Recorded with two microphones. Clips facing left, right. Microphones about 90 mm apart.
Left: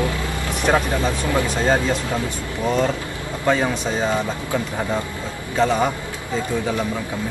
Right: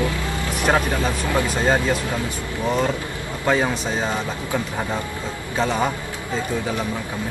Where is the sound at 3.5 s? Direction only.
15° right (ahead or behind).